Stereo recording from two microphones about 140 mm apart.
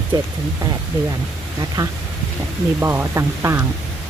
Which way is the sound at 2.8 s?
15° right (ahead or behind).